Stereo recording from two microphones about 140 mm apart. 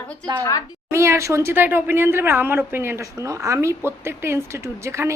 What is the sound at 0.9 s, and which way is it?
A woman's voice, 20° right (ahead or behind).